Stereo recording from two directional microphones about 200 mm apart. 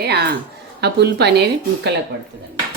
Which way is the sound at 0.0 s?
55° right (ahead or behind).